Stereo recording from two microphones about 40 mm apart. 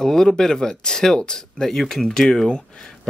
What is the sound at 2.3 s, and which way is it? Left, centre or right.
Speech, left.